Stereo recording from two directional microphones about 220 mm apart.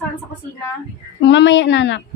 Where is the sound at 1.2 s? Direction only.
55° left (ahead or behind).